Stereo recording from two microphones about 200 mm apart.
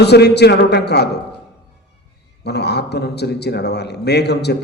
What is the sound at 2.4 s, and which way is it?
A man's voice, 55° left (ahead or behind).